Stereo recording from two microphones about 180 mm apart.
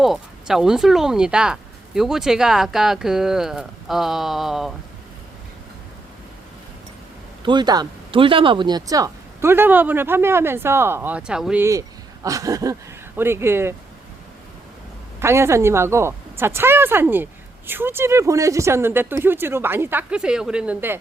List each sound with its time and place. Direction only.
0.0 s speech: centre (ahead or behind)
7.4 s speech: 25° right (ahead or behind); by 11.6 s 5° right (ahead or behind)
11.6 s speech: 20° right (ahead or behind)
15.2 s speech: 15° right (ahead or behind)